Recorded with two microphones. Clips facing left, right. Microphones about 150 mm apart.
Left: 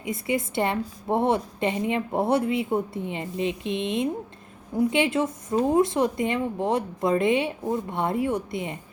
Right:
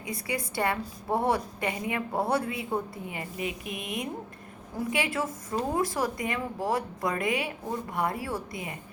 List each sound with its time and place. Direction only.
0.0 s a woman's voice: 20° left (ahead or behind)